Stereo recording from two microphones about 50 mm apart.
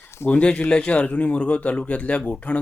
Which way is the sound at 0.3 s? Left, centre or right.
Left.